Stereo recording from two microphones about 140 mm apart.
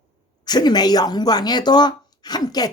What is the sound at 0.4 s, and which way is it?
Speech, 30° left (ahead or behind).